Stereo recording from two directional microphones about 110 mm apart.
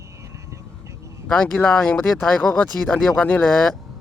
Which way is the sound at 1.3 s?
10° left (ahead or behind).